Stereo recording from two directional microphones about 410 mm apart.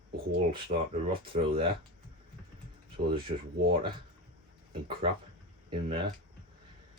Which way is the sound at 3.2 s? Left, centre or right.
Centre.